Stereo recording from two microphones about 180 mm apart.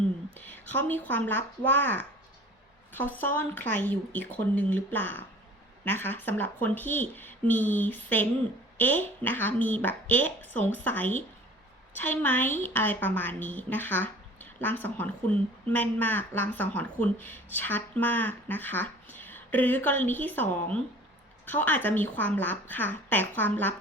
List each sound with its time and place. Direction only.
0.3 s a woman's voice: 10° left (ahead or behind)
3.2 s a woman's voice: 10° left (ahead or behind)